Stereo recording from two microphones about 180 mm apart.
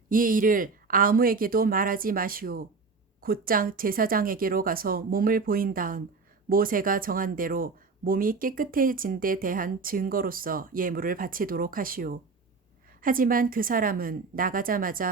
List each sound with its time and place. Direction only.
0.1 s speech: 50° right (ahead or behind)